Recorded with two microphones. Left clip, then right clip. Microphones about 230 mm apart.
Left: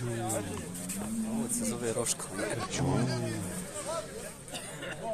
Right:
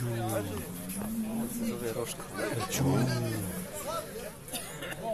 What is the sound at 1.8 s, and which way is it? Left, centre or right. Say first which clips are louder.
Speech: left 3 dB; left.